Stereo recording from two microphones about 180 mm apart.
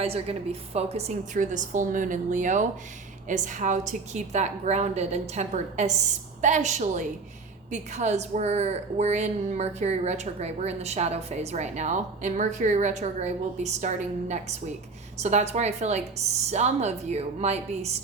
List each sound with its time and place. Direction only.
0.0 s a woman's voice: 35° right (ahead or behind)
15.2 s a woman's voice: 40° right (ahead or behind)